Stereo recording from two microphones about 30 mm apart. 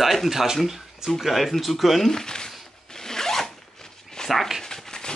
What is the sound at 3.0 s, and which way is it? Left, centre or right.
Zipper, centre.